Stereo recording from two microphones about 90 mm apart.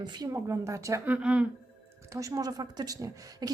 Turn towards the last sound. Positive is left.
turn(degrees=-45)  # may be behind; listen again after turning